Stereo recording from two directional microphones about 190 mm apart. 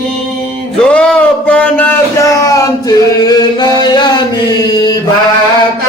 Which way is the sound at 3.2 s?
20° left (ahead or behind).